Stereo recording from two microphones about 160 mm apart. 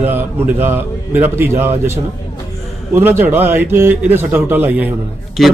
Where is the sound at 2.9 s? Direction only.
15° right (ahead or behind).